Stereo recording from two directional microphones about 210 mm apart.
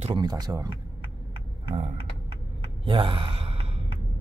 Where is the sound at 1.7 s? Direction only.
25° right (ahead or behind).